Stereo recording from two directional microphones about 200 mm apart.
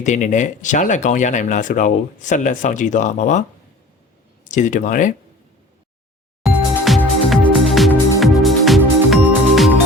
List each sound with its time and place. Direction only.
0.0 s speech: 35° left (ahead or behind)
4.4 s speech: 40° left (ahead or behind)
6.4 s music: centre (ahead or behind)